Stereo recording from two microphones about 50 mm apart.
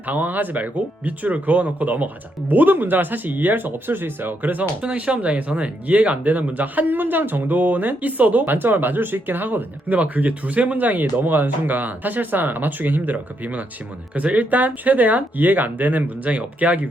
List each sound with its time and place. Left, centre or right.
0.0 s speech: right
4.8 s speech: right